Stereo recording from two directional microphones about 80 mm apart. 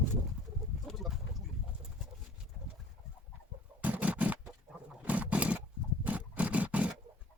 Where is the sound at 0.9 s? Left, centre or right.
Centre.